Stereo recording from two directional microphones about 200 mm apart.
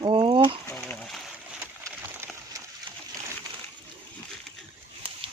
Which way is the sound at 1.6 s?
10° right (ahead or behind).